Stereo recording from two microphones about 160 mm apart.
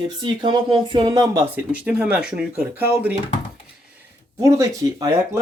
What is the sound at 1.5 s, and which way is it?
Speech, 10° right (ahead or behind).